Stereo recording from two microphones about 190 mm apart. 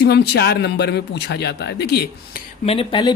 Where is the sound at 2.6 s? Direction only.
30° left (ahead or behind).